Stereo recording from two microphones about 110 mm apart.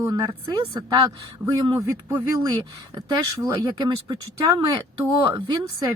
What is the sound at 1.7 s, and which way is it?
Speech, 20° right (ahead or behind).